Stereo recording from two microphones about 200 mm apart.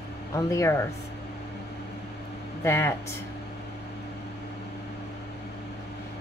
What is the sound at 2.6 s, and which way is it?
Speech, 15° left (ahead or behind).